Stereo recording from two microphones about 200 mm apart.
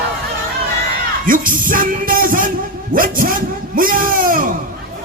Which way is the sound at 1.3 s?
45° right (ahead or behind).